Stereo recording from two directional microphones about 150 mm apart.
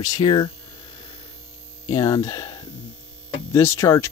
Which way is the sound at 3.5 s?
20° left (ahead or behind).